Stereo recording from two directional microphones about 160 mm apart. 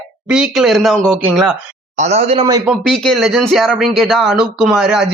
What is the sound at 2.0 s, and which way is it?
Speech, 45° right (ahead or behind).